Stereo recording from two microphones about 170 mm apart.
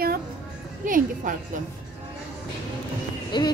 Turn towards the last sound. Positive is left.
turn(degrees=25)  # may be behind; listen again after turning